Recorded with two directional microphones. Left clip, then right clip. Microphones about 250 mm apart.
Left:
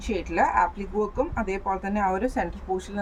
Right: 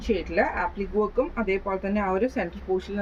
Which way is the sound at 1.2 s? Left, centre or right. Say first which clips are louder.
Right 2 dB; centre.